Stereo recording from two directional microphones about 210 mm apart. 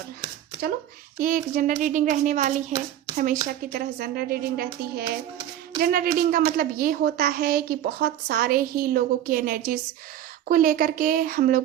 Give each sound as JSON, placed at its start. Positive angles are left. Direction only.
{"t": 1.2, "sound": "a child's voice", "side_deg": -40}